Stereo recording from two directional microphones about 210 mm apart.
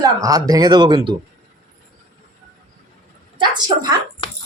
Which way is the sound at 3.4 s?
20° right (ahead or behind).